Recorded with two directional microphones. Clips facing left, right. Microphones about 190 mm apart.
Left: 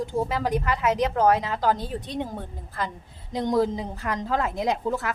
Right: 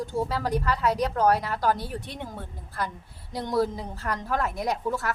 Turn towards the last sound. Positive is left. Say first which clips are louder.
# left 2 dB
turn(degrees=15)  # may be behind; listen again after turning